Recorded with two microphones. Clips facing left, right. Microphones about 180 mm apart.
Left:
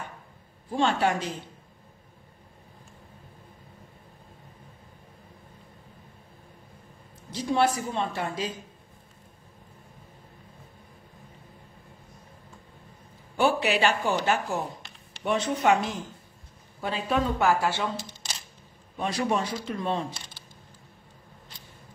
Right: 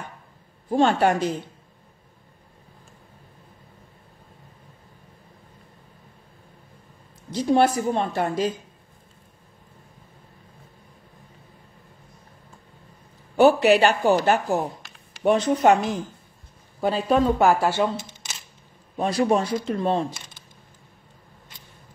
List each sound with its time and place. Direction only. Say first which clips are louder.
0.7 s speech: right 6 dB; 45° right (ahead or behind)
7.3 s speech: right 5 dB; 50° right (ahead or behind)
13.4 s a man's voice: right 8 dB; 45° right (ahead or behind)